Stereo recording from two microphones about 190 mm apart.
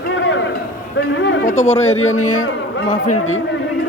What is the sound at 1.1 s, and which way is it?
Speech, 70° left (ahead or behind).